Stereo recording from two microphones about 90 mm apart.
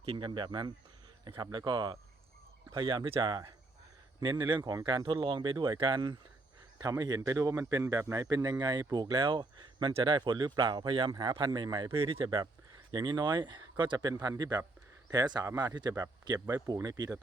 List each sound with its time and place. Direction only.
0.0 s speech: 90° right
0.3 s speech: 60° right (ahead or behind)
2.7 s speech: 65° right (ahead or behind)
11.1 s speech: 55° right (ahead or behind)
12.9 s speech: 50° right (ahead or behind)
16.6 s speech: 40° right (ahead or behind)